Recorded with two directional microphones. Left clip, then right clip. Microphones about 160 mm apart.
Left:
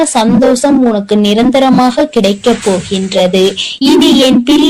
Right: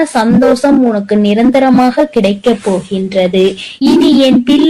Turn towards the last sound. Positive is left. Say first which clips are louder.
# left 1 dB
turn(degrees=20)  # may be behind; listen again after turning